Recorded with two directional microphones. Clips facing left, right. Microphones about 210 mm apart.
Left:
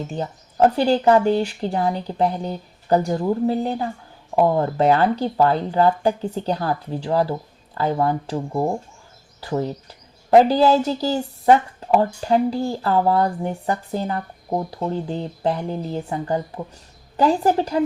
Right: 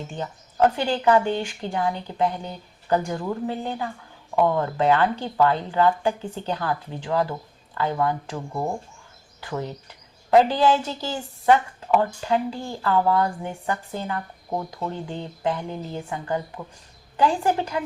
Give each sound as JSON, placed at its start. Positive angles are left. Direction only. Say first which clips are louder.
{"t": 0.1, "sound": "speech", "louder": "left 5 dB", "side_deg": 35}